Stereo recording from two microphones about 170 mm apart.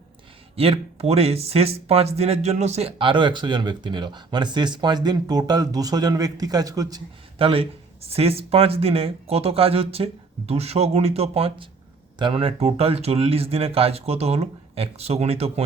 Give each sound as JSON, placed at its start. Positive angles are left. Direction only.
{"t": 0.5, "sound": "speech", "side_deg": -35}
{"t": 7.3, "sound": "speech", "side_deg": -35}